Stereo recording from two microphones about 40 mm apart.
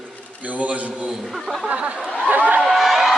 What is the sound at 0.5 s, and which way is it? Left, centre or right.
Speech, right.